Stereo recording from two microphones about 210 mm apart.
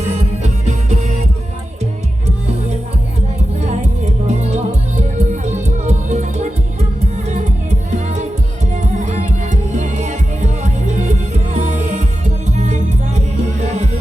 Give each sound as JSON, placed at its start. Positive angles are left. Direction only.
{"t": 0.6, "sound": "music", "side_deg": -35}
{"t": 3.7, "sound": "music", "side_deg": -35}